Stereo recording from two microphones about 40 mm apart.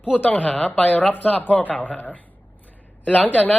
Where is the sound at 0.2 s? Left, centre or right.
Left.